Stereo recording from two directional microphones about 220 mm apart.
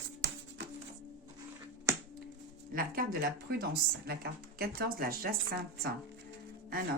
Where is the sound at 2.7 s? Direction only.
40° right (ahead or behind).